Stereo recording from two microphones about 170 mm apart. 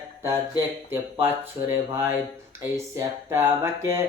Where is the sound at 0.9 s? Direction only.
15° right (ahead or behind).